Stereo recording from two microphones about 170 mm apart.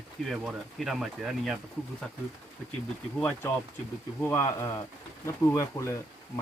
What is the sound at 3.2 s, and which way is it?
Speech, 10° left (ahead or behind).